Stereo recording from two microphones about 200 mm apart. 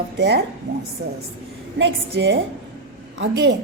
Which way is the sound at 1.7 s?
60° right (ahead or behind).